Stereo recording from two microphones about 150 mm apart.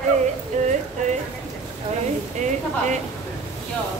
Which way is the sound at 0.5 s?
50° right (ahead or behind).